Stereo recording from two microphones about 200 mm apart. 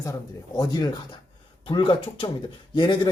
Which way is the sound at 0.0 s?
15° left (ahead or behind).